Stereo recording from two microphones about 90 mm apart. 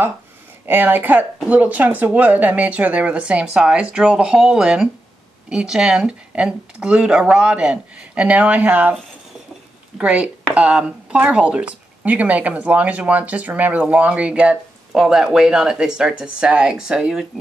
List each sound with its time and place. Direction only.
0.7 s speech: 20° right (ahead or behind)
9.9 s speech: 15° right (ahead or behind)